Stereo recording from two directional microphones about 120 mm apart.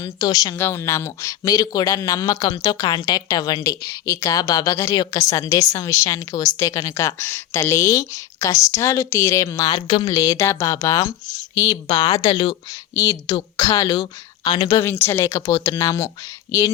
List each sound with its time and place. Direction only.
0.0 s speech: 35° left (ahead or behind)
0.5 s a man's voice: 20° left (ahead or behind); by 14.8 s 35° left (ahead or behind)
14.8 s a man's voice: 20° left (ahead or behind)